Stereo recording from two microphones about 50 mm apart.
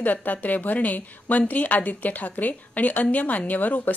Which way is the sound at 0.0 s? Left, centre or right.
Left.